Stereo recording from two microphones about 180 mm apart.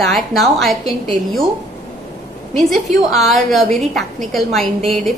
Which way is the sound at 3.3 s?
Centre (ahead or behind).